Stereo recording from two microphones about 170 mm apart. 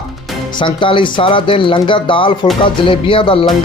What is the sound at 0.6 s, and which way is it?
Speech, 30° left (ahead or behind).